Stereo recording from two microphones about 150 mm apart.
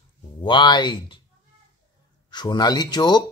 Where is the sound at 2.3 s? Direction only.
30° left (ahead or behind).